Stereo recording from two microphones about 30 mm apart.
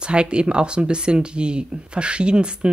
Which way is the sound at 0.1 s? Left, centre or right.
Right.